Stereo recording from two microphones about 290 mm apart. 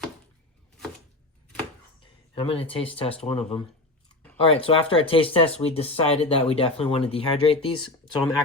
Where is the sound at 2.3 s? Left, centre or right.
Centre.